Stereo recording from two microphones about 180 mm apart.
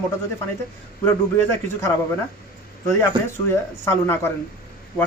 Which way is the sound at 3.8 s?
15° left (ahead or behind).